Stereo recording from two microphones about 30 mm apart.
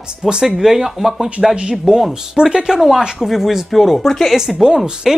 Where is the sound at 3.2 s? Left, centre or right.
Centre.